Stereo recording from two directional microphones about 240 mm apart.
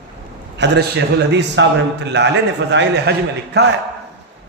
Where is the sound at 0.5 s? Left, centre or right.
Right.